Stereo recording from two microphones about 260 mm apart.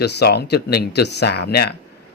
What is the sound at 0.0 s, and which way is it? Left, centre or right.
Speech, left.